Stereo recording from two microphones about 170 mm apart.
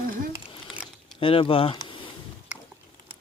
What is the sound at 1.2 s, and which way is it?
Speech, 30° left (ahead or behind).